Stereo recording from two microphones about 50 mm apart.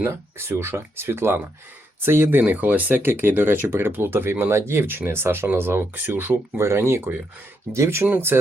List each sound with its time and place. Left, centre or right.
0.0 s speech: right
2.5 s speech: right
7.7 s speech: right
8.3 s speech: right